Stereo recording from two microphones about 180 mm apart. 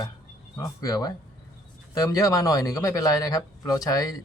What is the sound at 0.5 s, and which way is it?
Speech, 20° left (ahead or behind).